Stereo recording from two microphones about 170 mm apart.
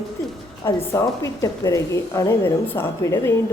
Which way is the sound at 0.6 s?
15° left (ahead or behind).